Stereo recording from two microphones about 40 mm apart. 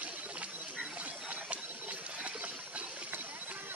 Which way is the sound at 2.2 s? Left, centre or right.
Right.